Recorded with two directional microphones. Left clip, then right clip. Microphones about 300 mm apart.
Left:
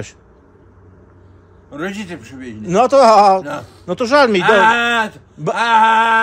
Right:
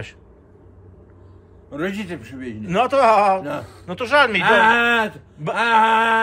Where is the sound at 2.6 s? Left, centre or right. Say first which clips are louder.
Left 6 dB; centre.